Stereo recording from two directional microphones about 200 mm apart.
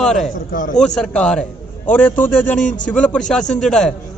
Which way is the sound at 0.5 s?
40° left (ahead or behind).